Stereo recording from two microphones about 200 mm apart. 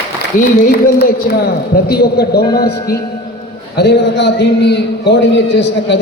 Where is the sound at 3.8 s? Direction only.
60° left (ahead or behind).